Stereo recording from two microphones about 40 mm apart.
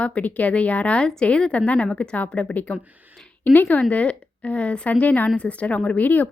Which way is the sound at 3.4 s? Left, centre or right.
Left.